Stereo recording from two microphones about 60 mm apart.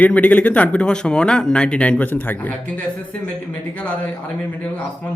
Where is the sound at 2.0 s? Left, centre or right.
Left.